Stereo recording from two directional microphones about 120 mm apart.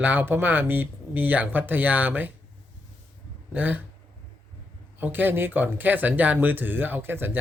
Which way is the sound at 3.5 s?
15° right (ahead or behind).